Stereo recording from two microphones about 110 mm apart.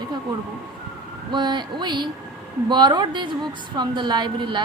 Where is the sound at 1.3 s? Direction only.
40° right (ahead or behind).